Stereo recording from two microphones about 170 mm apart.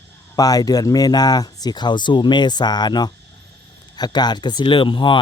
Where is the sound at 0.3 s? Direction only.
20° left (ahead or behind).